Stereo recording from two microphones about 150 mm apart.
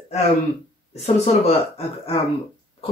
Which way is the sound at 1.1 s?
45° left (ahead or behind).